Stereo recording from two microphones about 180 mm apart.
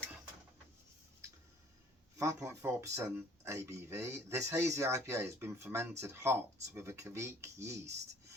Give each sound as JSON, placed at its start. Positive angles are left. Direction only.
{"t": 2.1, "sound": "speech", "side_deg": -15}